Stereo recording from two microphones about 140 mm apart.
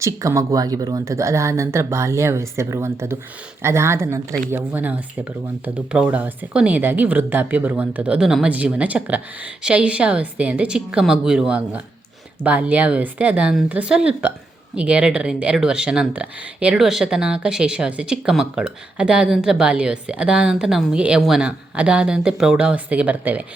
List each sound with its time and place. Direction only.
0.0 s speech: 20° right (ahead or behind)